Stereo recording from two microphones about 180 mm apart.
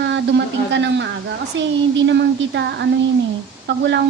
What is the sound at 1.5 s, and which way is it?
A woman's voice, 90° right.